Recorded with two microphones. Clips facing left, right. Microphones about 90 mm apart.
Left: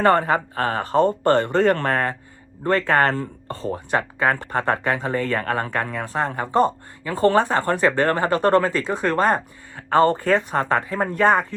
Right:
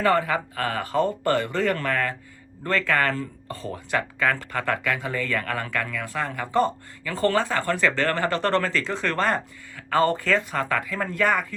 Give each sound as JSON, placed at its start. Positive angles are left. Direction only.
{"t": 0.0, "sound": "speech", "side_deg": 40}
{"t": 9.7, "sound": "speech", "side_deg": 30}